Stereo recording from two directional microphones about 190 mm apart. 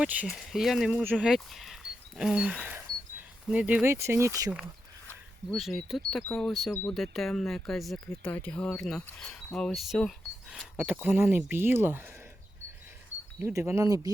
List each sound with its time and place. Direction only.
0.0 s speech: 5° right (ahead or behind)
5.0 s a sound: centre (ahead or behind)
6.1 s speech: 5° left (ahead or behind)
11.0 s speech: 10° right (ahead or behind)
13.4 s speech: 15° right (ahead or behind)